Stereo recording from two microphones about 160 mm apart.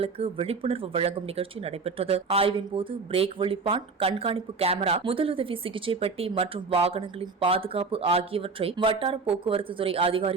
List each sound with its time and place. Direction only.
0.0 s speech: 40° right (ahead or behind)